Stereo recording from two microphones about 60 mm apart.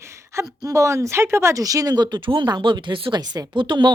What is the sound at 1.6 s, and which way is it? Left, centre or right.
Speech, right.